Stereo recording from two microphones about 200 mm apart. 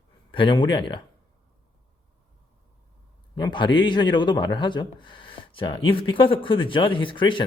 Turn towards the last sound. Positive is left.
turn(degrees=25)  # may be behind; listen again after turning